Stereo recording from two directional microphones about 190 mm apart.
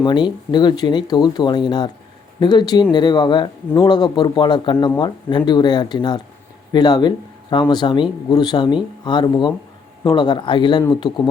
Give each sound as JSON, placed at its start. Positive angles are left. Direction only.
{"t": 0.0, "sound": "speech", "side_deg": 25}